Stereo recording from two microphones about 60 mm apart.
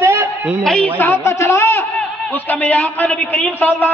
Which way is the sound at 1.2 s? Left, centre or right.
Left.